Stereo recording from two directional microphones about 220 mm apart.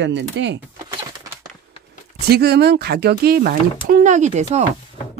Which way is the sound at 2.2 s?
45° right (ahead or behind).